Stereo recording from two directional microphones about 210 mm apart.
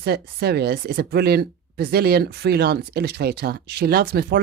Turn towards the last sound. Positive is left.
turn(degrees=-50)  # may be behind; listen again after turning